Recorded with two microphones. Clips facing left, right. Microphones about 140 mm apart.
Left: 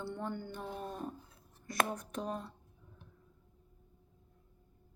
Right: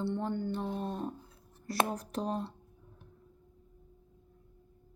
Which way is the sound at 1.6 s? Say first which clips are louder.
Right 3 dB; 35° right (ahead or behind).